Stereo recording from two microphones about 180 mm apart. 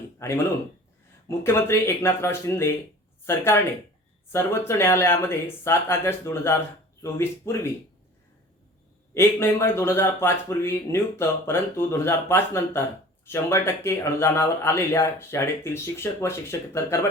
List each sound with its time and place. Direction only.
0.2 s speech: 15° left (ahead or behind)
9.1 s speech: 15° left (ahead or behind)